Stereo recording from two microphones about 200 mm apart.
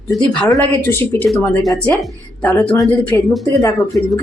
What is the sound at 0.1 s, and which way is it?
Speech, 5° left (ahead or behind).